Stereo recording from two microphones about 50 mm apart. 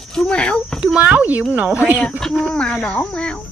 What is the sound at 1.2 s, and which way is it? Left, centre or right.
Speech, right.